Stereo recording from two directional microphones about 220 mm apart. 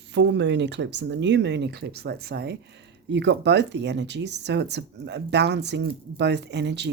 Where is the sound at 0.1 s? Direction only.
50° right (ahead or behind).